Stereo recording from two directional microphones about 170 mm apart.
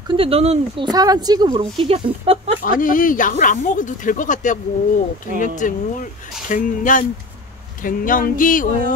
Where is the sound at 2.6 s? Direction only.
55° left (ahead or behind).